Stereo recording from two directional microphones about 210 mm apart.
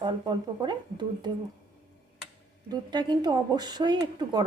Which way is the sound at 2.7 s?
20° right (ahead or behind).